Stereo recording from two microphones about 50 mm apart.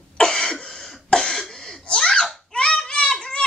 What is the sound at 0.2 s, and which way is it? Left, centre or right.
Cough, centre.